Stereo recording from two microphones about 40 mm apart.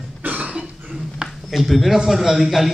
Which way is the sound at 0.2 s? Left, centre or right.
Right.